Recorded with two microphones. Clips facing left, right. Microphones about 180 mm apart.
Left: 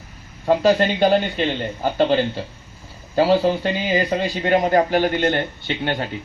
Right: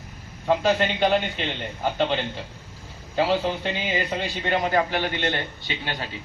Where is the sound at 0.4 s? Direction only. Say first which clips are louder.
Left 5 dB; 35° left (ahead or behind); by 6.1 s 55° left (ahead or behind).